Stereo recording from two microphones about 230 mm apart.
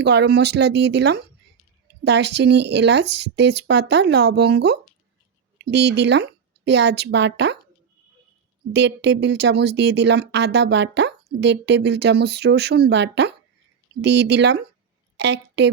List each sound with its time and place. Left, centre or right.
0.0 s speech: right
8.7 s a woman's voice: right